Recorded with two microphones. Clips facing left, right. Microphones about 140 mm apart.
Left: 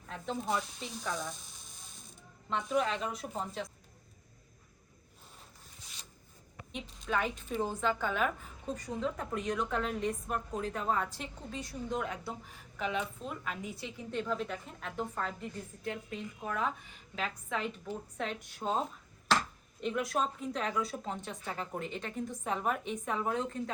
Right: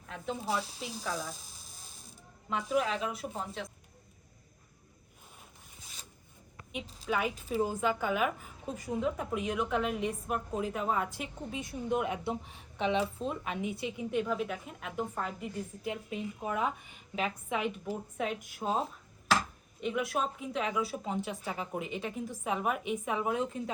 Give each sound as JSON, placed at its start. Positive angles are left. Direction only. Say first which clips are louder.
{"t": 0.1, "sound": "a woman's voice", "louder": "even", "side_deg": -5}
{"t": 1.7, "sound": "a sound", "louder": "right 1 dB", "side_deg": -5}
{"t": 7.0, "sound": "a woman's voice", "louder": "right 1 dB", "side_deg": -5}